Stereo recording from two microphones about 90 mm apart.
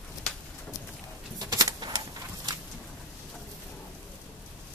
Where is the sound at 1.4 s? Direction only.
45° right (ahead or behind).